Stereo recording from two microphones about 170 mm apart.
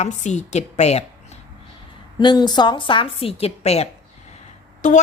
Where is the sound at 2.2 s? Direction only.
25° left (ahead or behind).